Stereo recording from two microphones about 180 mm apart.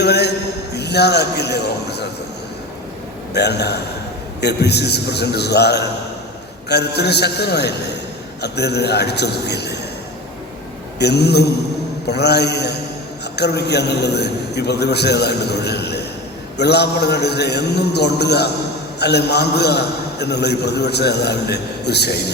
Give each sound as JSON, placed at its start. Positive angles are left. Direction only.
{"t": 0.0, "sound": "a man's voice", "side_deg": 65}
{"t": 3.3, "sound": "a man's voice", "side_deg": 65}
{"t": 11.0, "sound": "a man's voice", "side_deg": 65}